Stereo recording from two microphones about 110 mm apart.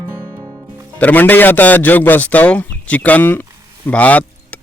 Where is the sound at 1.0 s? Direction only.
15° left (ahead or behind).